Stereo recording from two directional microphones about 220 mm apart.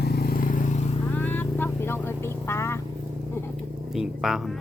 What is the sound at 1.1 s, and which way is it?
Vehicle, 10° left (ahead or behind).